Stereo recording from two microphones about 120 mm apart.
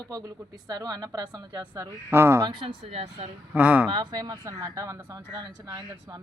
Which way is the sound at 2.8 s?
60° right (ahead or behind).